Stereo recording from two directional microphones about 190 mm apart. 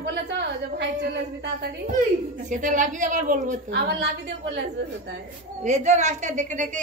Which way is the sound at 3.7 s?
60° right (ahead or behind).